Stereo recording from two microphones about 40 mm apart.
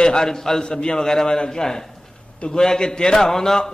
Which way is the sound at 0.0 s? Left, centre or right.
Centre.